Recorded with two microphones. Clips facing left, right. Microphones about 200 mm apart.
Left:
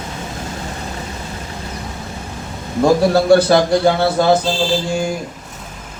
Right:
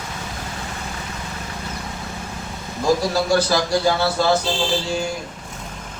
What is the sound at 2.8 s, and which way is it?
A man's voice, 60° left (ahead or behind).